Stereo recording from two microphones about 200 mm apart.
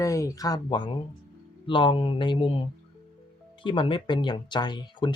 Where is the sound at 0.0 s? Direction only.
15° left (ahead or behind).